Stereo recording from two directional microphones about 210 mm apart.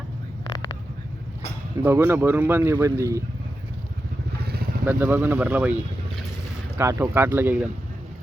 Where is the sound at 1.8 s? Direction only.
10° right (ahead or behind).